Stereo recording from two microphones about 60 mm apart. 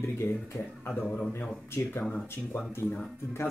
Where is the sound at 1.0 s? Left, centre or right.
Centre.